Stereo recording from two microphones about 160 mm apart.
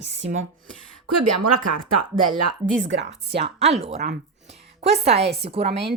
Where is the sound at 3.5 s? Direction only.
40° right (ahead or behind).